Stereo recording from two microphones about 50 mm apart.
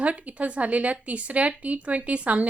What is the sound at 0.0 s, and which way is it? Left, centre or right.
Speech, right.